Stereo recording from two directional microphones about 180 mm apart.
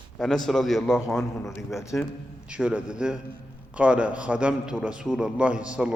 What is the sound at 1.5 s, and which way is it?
Speech, 15° left (ahead or behind).